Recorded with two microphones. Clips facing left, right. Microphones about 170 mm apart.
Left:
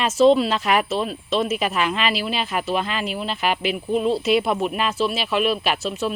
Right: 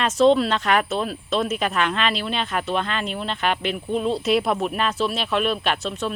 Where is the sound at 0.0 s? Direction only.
5° left (ahead or behind).